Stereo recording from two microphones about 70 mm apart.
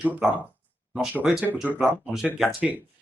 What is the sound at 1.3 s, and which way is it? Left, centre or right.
Speech, centre.